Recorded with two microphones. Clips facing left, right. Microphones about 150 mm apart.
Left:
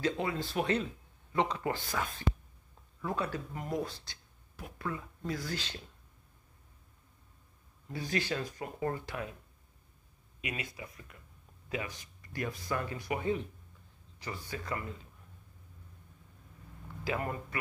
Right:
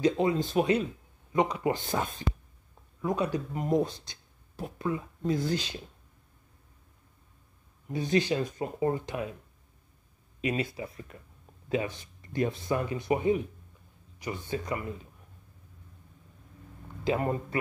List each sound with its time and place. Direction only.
0.0 s speech: 20° right (ahead or behind)
7.9 s speech: 20° right (ahead or behind)
10.4 s speech: 30° right (ahead or behind)
17.0 s speech: 25° right (ahead or behind)